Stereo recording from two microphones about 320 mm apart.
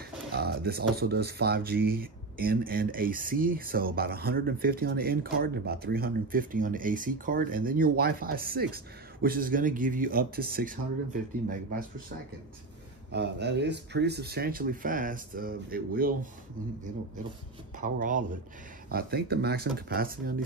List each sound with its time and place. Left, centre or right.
0.3 s speech: right
13.1 s speech: right
17.7 s speech: right